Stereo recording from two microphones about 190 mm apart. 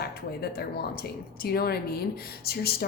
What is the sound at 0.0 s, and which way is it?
Speech, 55° left (ahead or behind).